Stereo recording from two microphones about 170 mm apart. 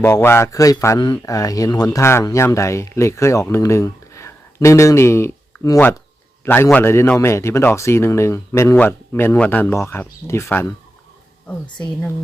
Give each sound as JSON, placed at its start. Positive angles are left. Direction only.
{"t": 0.0, "sound": "speech", "side_deg": 15}